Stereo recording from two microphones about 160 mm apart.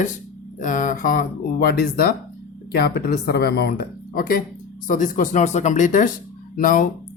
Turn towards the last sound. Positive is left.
turn(degrees=60)  # may be behind; listen again after turning